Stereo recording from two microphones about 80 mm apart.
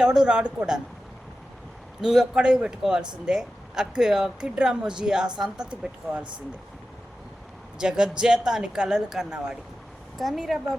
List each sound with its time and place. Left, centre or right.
0.0 s speech: centre
2.0 s speech: centre
7.8 s speech: centre